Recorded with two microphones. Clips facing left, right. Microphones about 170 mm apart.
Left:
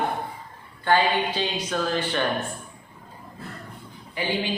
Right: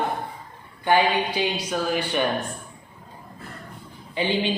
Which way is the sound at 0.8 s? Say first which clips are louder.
Right 1 dB; 15° right (ahead or behind).